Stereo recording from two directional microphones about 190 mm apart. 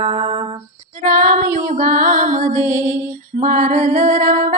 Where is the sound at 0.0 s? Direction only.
30° right (ahead or behind).